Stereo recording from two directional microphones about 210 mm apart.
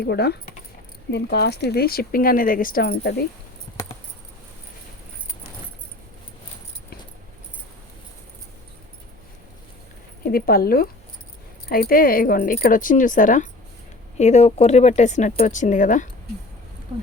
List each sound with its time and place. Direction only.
0.0 s speech: 50° left (ahead or behind)
10.2 s speech: 45° left (ahead or behind)